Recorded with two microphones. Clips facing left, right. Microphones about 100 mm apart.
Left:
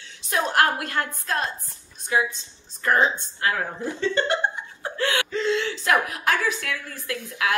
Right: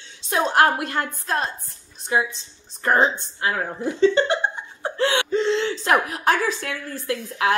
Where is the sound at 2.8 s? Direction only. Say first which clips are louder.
Right 2 dB; 25° right (ahead or behind).